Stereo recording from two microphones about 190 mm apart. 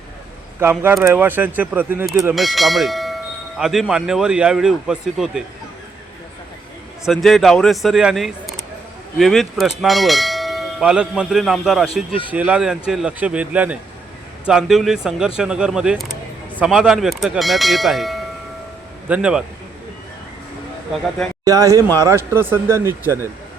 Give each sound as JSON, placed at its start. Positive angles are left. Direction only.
{"t": 0.6, "sound": "speech", "side_deg": -10}
{"t": 2.3, "sound": "bell", "side_deg": 0}
{"t": 7.0, "sound": "bell", "side_deg": 0}
{"t": 12.3, "sound": "speech", "side_deg": -5}
{"t": 14.4, "sound": "bell", "side_deg": 0}
{"t": 21.4, "sound": "speech", "side_deg": -15}